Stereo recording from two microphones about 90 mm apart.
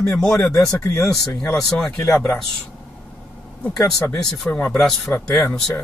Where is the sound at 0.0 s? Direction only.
10° left (ahead or behind).